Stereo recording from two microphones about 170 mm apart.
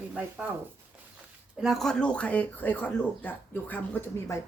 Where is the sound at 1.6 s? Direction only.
Centre (ahead or behind).